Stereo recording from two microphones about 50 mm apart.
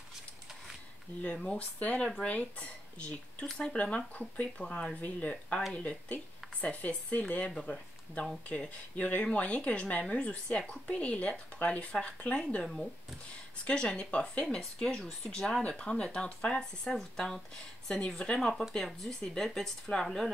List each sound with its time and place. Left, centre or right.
1.3 s a woman's voice: centre
1.6 s speech: left
6.6 s speech: left
13.7 s a woman's voice: centre
16.8 s a woman's voice: centre